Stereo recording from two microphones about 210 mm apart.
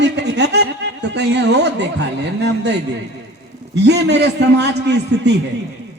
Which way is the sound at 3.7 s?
55° right (ahead or behind).